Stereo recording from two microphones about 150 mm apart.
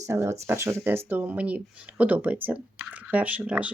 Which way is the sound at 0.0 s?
20° right (ahead or behind).